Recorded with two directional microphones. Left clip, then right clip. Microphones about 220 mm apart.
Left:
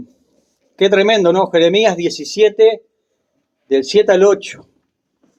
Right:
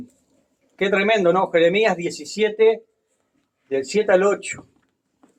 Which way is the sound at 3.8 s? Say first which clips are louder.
Left 7 dB; 45° left (ahead or behind).